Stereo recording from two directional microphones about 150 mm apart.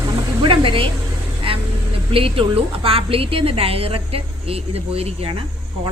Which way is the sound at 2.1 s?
35° right (ahead or behind).